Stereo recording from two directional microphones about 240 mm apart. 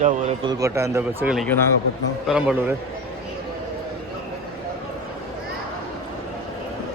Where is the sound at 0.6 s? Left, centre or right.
Centre.